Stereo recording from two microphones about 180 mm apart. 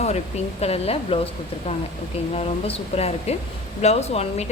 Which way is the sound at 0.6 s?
35° left (ahead or behind).